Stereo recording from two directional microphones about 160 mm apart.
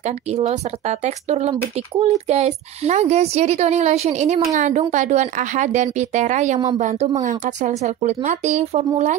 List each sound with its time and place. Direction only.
0.0 s speech: 45° right (ahead or behind)